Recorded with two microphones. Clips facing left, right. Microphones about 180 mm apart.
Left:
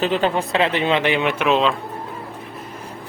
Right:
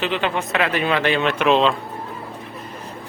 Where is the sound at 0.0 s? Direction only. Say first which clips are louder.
Left 3 dB; 40° left (ahead or behind); by 1.5 s 15° left (ahead or behind).